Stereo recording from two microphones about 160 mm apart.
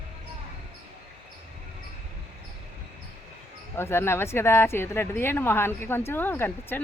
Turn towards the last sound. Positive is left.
turn(degrees=10)  # may be behind; listen again after turning